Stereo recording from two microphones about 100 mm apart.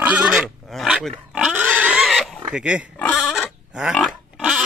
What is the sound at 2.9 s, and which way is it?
Pig, 15° left (ahead or behind).